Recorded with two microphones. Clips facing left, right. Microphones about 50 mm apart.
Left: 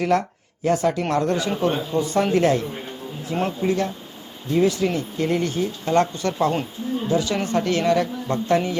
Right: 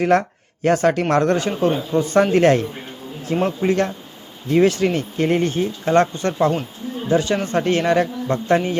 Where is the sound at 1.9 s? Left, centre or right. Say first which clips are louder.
Right 3 dB; right.